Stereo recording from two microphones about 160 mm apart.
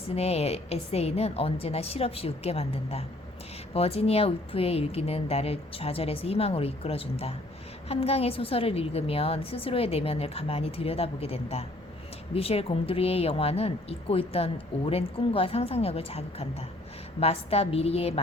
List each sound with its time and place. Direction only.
0.1 s speech: 40° left (ahead or behind)